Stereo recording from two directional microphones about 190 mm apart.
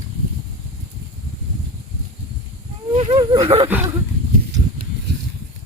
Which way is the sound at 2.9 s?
30° right (ahead or behind).